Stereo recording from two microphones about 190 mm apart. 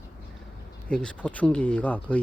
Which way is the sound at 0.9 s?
5° left (ahead or behind).